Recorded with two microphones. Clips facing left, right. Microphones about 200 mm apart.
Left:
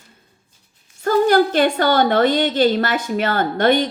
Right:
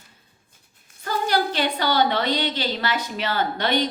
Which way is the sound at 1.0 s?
50° left (ahead or behind).